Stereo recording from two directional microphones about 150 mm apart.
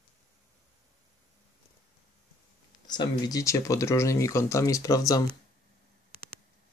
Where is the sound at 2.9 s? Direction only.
25° left (ahead or behind).